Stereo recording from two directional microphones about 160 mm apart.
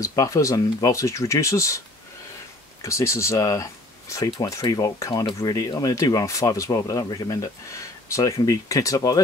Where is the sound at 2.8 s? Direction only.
20° left (ahead or behind).